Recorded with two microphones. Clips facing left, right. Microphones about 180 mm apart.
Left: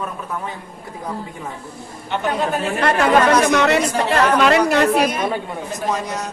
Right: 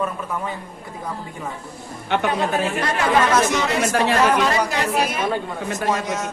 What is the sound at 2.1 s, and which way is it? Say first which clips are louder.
Speech: right 3 dB; 65° right (ahead or behind).